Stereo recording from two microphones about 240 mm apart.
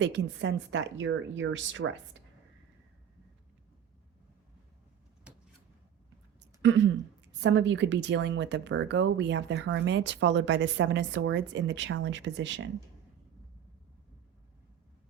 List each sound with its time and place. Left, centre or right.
0.0 s speech: right
6.4 s throat clearing: right
7.4 s speech: right